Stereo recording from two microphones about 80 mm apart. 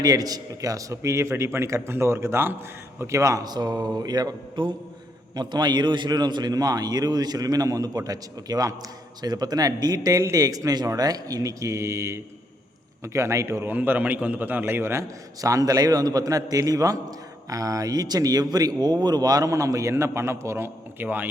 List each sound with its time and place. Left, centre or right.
0.0 s a man's voice: right
13.7 s a man's voice: right